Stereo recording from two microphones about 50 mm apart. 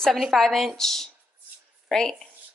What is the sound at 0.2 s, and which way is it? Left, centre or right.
A woman's voice, centre.